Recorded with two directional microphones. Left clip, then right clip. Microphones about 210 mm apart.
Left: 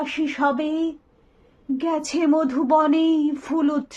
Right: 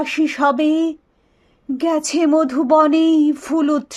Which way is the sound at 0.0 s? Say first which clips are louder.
Right 5 dB; 50° right (ahead or behind).